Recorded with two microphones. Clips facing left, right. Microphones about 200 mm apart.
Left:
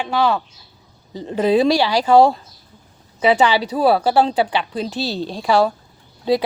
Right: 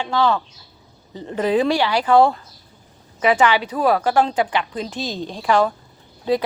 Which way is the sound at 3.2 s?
30° left (ahead or behind).